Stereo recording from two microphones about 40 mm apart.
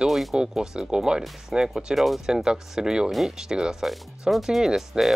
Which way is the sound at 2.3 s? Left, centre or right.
Centre.